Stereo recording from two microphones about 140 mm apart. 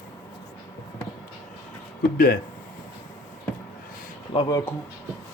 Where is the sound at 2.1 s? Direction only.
90° left.